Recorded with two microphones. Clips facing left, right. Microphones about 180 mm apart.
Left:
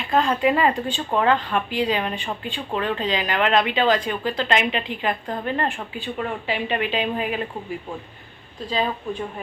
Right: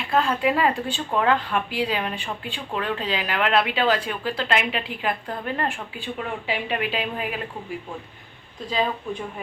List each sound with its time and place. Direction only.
0.1 s speech: 5° right (ahead or behind)